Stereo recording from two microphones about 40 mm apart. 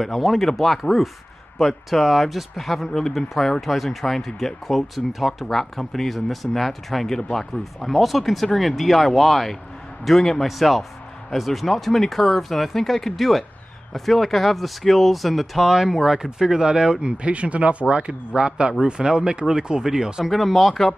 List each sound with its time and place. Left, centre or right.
0.0 s speech: centre
2.9 s speech: centre
20.2 s speech: centre